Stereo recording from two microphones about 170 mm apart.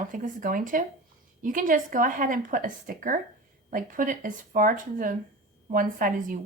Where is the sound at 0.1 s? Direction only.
50° right (ahead or behind).